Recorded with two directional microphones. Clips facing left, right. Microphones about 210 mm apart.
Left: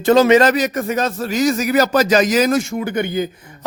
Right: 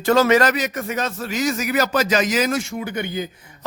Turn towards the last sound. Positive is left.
turn(degrees=50)  # may be behind; listen again after turning